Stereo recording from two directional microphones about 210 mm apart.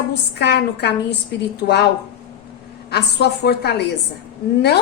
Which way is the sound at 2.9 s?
50° left (ahead or behind).